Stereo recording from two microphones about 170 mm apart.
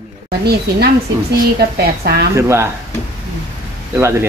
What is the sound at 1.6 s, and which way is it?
Speech, 70° right (ahead or behind).